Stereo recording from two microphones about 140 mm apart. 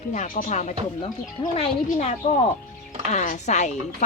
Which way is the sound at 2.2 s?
60° left (ahead or behind).